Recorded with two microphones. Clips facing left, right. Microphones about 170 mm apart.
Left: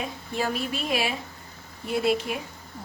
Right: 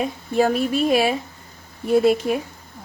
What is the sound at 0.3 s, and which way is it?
A woman's voice, 45° right (ahead or behind).